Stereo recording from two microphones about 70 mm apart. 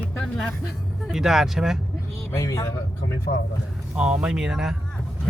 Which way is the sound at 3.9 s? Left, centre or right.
Centre.